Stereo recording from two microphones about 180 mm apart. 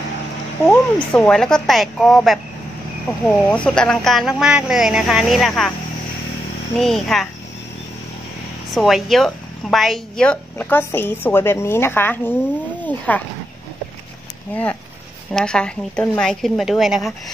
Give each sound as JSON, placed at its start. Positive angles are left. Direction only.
{"t": 0.6, "sound": "speech", "side_deg": 15}
{"t": 1.1, "sound": "speech", "side_deg": 5}
{"t": 6.8, "sound": "speech", "side_deg": 0}
{"t": 8.7, "sound": "speech", "side_deg": 0}
{"t": 14.5, "sound": "speech", "side_deg": 10}